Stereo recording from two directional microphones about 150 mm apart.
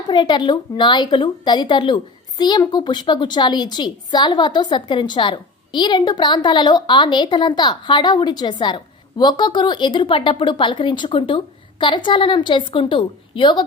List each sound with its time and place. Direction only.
0.1 s a woman's voice: 30° left (ahead or behind)